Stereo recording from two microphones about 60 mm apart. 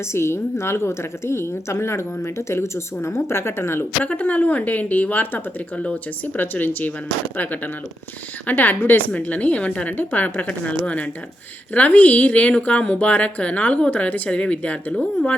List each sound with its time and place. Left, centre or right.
0.0 s a woman's voice: left
4.0 s a woman's voice: left
5.7 s a woman's voice: centre
6.3 s a woman's voice: left